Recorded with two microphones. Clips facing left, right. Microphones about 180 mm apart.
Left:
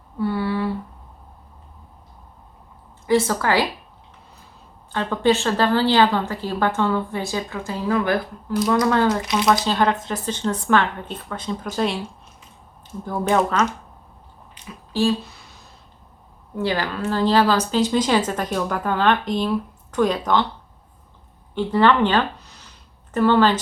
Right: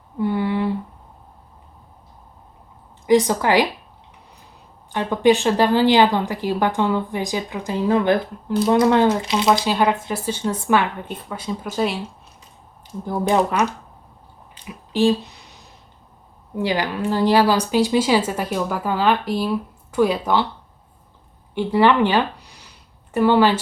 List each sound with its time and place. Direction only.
0.2 s a sound: 20° right (ahead or behind)
3.1 s a woman's voice: 15° right (ahead or behind)
4.9 s a woman's voice: 15° right (ahead or behind)
9.6 s a woman's voice: 10° right (ahead or behind)
13.1 s a woman's voice: 15° right (ahead or behind)
14.9 s a sound: 20° right (ahead or behind)
16.6 s a woman's voice: 15° right (ahead or behind)
21.5 s a woman's voice: 10° right (ahead or behind)